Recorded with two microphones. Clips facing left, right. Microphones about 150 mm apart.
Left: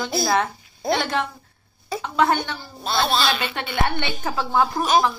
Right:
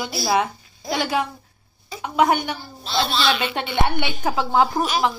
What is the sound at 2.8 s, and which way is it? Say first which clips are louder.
Speech: left 2 dB; 50° left (ahead or behind).